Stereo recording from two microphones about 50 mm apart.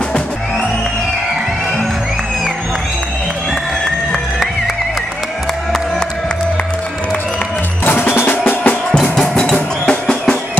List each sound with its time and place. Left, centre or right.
7.8 s music: left
9.0 s music: centre